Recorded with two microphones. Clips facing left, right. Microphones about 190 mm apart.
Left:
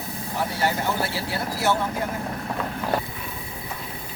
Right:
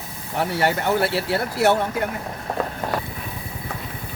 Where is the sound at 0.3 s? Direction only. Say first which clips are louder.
Right 4 dB; 65° right (ahead or behind).